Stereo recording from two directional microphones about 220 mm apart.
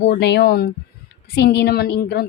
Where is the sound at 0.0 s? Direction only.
50° left (ahead or behind).